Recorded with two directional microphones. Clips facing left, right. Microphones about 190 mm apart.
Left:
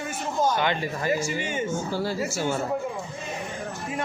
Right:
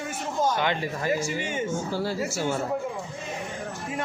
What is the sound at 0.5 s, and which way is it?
A man's voice, centre (ahead or behind).